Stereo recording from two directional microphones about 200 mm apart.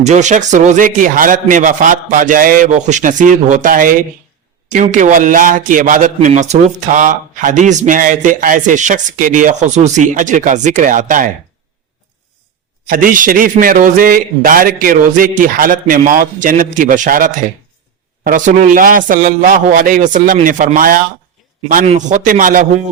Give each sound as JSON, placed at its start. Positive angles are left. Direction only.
{"t": 0.0, "sound": "a man's voice", "side_deg": -35}
{"t": 12.9, "sound": "a man's voice", "side_deg": -45}